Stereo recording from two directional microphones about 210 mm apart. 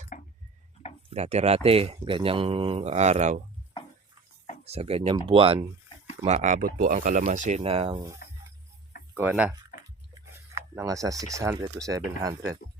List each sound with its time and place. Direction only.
0.1 s drip: 40° left (ahead or behind)
1.1 s speech: 30° right (ahead or behind)
4.6 s speech: 30° right (ahead or behind)
9.1 s speech: 10° right (ahead or behind)